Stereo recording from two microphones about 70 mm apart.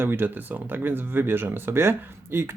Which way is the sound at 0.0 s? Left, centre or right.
Right.